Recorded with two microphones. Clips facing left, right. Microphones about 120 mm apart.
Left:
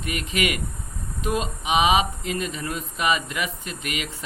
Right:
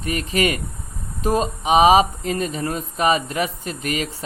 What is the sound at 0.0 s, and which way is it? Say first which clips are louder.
Speech: right 5 dB; 35° right (ahead or behind).